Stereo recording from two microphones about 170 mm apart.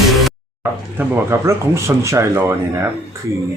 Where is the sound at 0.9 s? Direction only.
15° right (ahead or behind).